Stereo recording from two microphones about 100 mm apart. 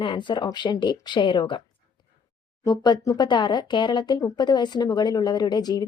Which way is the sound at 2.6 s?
45° left (ahead or behind).